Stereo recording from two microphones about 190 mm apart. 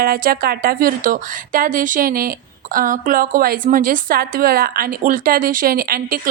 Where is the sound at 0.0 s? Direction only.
50° right (ahead or behind).